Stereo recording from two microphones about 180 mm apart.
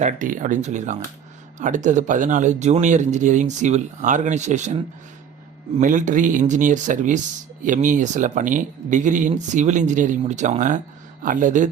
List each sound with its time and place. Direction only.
0.0 s speech: 45° right (ahead or behind)
5.8 s speech: 45° right (ahead or behind)